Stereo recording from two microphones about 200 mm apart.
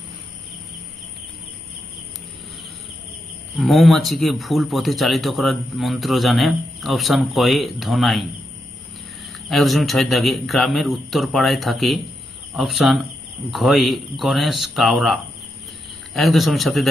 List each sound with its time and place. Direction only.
3.6 s speech: centre (ahead or behind)
9.5 s speech: centre (ahead or behind)